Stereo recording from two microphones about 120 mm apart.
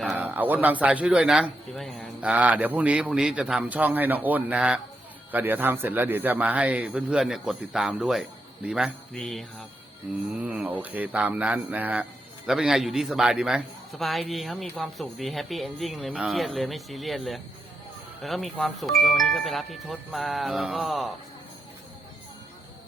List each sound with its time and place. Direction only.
0.2 s speech: 15° right (ahead or behind); by 2.0 s centre (ahead or behind)
2.2 s a man's voice: 10° right (ahead or behind)
10.0 s a man's voice: 10° right (ahead or behind)